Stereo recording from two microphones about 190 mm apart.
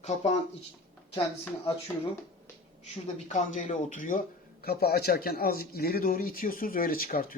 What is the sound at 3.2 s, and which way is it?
Speech, 40° left (ahead or behind).